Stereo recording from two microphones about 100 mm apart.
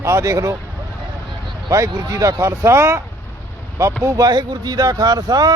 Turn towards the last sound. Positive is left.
turn(degrees=-45)  # may be behind; listen again after turning